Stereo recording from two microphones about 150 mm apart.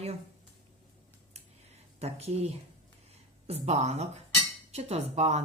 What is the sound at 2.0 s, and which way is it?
Speech, 45° right (ahead or behind).